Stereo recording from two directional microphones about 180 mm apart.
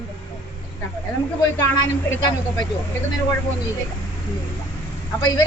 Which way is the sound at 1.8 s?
20° left (ahead or behind).